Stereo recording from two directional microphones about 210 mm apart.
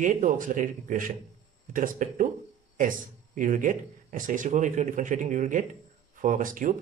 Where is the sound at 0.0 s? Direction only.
35° right (ahead or behind).